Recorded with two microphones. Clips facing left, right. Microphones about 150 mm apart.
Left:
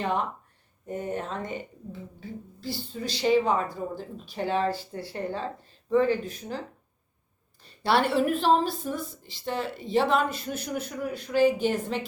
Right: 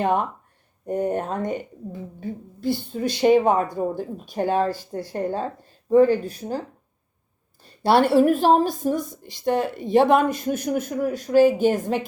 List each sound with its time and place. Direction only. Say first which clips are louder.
0.0 s a woman's voice: right 6 dB; 45° right (ahead or behind)
8.2 s a woman's voice: right 6 dB; 45° right (ahead or behind)